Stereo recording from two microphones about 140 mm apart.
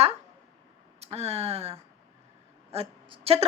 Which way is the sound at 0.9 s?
50° right (ahead or behind).